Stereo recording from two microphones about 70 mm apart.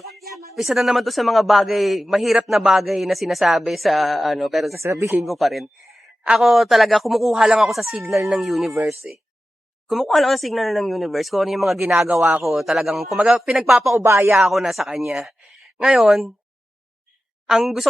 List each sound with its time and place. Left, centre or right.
0.0 s a sound: centre
0.5 s a man's voice: centre
4.8 s speech: right
5.2 s a man's voice: centre
8.7 s speech: right
9.9 s a man's voice: centre
14.0 s speech: right
14.3 s a man's voice: centre
17.4 s a woman's voice: centre